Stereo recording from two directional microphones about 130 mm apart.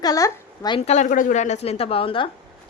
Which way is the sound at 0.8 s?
60° left (ahead or behind).